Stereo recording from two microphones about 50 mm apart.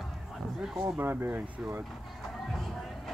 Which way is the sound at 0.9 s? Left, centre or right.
Right.